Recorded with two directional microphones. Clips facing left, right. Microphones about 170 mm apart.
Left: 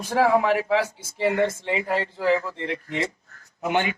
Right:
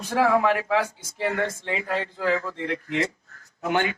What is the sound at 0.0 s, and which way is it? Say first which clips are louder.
Speech: left 1 dB; 10° left (ahead or behind).